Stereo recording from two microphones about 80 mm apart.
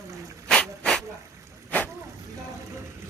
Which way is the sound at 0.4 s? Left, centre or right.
Centre.